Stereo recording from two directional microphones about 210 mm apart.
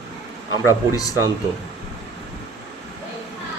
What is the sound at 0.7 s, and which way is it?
Speech, 15° left (ahead or behind).